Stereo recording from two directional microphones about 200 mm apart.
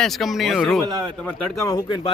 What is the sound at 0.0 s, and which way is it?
Speech, centre (ahead or behind).